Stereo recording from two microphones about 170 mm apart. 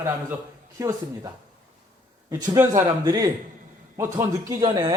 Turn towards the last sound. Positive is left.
turn(degrees=-25)  # may be behind; listen again after turning